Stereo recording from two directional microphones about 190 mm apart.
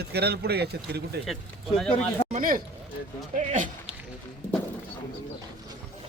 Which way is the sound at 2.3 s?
45° right (ahead or behind).